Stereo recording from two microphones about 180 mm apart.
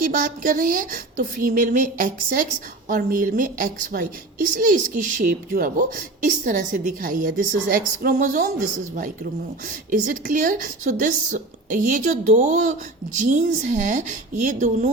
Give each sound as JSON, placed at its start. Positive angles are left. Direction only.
{"t": 0.0, "sound": "speech", "side_deg": -50}
{"t": 9.9, "sound": "speech", "side_deg": -50}